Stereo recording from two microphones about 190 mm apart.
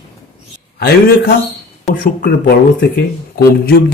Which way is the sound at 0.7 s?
55° left (ahead or behind).